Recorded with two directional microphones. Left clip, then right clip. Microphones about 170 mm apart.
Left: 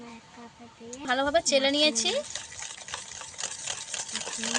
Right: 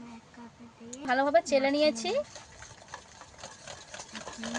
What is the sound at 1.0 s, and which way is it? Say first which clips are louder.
Speech: even; 10° right (ahead or behind).